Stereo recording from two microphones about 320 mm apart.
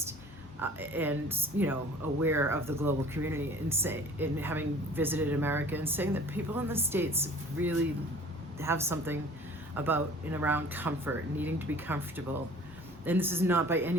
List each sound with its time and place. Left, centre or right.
0.6 s speech: centre